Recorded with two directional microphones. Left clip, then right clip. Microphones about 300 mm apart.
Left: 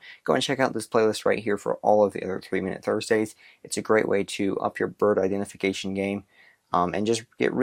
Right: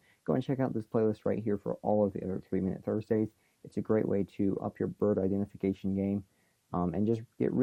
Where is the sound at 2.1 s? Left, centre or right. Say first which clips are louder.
Left 7 dB; centre.